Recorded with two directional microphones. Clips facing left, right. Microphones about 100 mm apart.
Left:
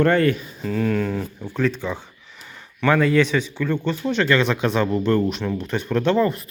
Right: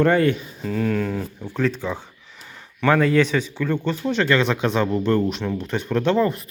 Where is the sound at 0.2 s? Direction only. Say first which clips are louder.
Even; 20° right (ahead or behind).